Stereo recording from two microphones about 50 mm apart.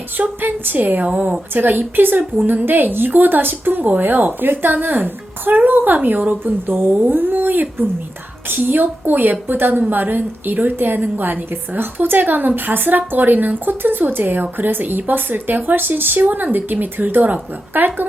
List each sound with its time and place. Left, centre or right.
0.2 s a woman's voice: right